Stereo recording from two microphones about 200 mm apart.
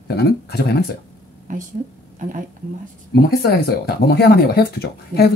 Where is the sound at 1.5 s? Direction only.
40° right (ahead or behind).